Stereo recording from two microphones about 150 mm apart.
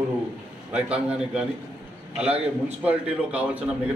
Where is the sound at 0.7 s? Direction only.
5° right (ahead or behind).